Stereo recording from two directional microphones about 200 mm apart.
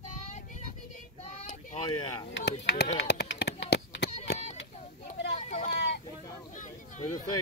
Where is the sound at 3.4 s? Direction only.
60° left (ahead or behind).